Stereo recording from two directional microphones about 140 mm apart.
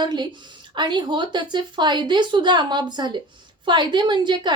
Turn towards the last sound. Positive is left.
turn(degrees=-35)  # may be behind; listen again after turning